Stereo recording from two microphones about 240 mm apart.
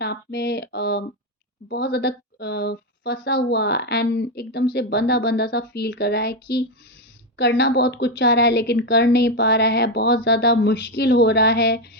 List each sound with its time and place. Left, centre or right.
0.0 s a woman's voice: left